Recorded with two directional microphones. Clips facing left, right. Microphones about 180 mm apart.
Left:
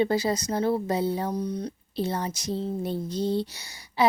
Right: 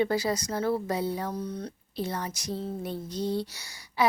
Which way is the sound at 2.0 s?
30° left (ahead or behind).